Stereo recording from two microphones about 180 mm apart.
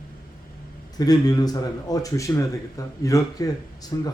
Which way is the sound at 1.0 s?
20° left (ahead or behind).